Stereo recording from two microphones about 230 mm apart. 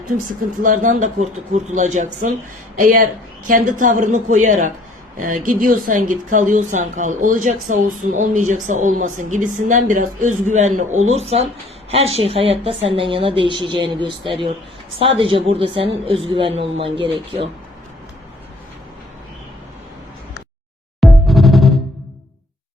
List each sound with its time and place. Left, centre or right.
0.6 s a woman's voice: right
21.0 s music: centre